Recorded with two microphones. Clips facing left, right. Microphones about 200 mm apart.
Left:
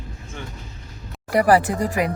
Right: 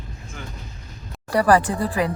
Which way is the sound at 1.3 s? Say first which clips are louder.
Left 1 dB; 15° left (ahead or behind).